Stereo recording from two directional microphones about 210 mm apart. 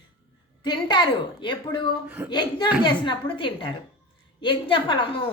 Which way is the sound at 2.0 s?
10° right (ahead or behind).